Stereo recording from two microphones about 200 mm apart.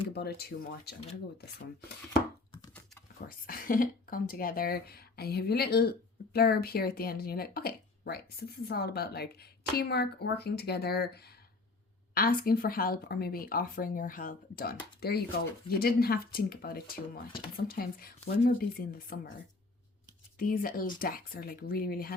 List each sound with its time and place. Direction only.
0.1 s speech: 55° left (ahead or behind)
3.2 s speech: 45° left (ahead or behind)
20.4 s speech: 45° left (ahead or behind)